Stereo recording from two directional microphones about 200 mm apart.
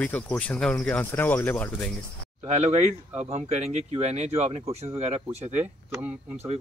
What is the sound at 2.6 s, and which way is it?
Speech, 35° right (ahead or behind).